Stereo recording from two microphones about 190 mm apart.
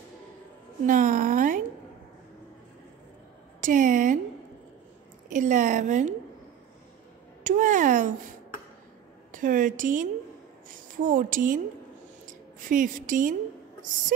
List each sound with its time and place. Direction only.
0.8 s a sound: 45° right (ahead or behind)
3.6 s speech: 45° right (ahead or behind)
5.3 s a woman's voice: 40° right (ahead or behind)
7.4 s speech: 45° right (ahead or behind)
9.3 s a woman's voice: 45° right (ahead or behind)